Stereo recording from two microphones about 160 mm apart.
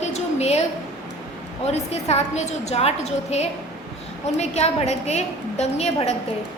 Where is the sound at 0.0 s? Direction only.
45° left (ahead or behind).